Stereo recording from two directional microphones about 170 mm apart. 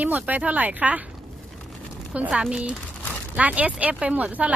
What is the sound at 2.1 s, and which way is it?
A woman's voice, 5° right (ahead or behind).